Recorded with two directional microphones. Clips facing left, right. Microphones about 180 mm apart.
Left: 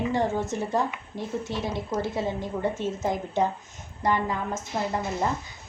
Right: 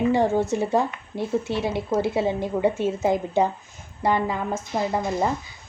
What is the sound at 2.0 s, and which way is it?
A woman's voice, 10° right (ahead or behind).